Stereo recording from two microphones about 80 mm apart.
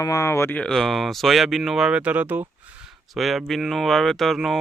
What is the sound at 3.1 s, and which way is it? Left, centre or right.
Speech, centre.